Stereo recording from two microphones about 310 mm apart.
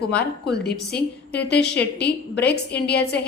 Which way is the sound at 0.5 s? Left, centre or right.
Left.